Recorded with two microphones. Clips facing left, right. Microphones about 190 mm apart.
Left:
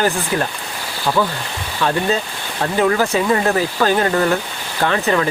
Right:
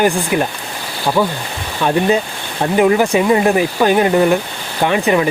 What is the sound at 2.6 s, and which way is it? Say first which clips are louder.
Speech: right 4 dB; 20° right (ahead or behind).